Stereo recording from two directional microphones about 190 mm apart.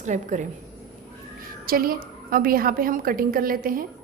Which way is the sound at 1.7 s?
50° right (ahead or behind).